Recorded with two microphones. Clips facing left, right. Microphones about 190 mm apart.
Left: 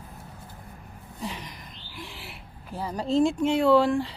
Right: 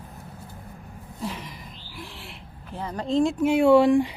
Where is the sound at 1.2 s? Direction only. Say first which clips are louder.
Right 2 dB; centre (ahead or behind).